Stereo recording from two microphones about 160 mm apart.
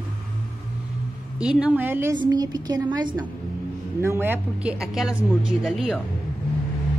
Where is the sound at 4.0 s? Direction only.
15° right (ahead or behind).